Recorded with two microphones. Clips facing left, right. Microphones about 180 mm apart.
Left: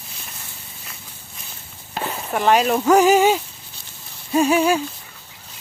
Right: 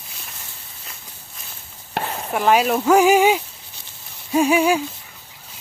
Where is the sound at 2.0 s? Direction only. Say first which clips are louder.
Right 1 dB; 70° right (ahead or behind).